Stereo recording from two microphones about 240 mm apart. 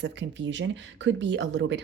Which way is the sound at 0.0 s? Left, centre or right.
Right.